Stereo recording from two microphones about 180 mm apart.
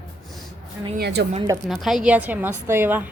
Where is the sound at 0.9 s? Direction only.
65° right (ahead or behind).